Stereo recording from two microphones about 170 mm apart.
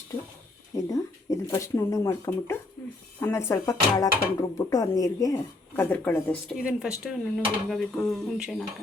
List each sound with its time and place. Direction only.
0.9 s speech: 20° left (ahead or behind)
6.6 s speech: 5° right (ahead or behind)